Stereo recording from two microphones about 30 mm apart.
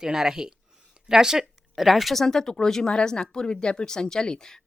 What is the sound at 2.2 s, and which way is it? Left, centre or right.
Speech, centre.